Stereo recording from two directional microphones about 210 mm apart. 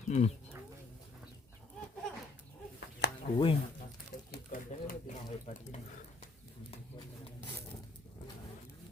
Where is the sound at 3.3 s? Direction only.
25° left (ahead or behind).